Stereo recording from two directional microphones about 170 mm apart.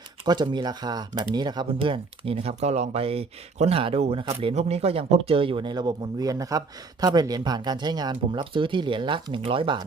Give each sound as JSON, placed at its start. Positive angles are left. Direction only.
{"t": 0.3, "sound": "speech", "side_deg": -25}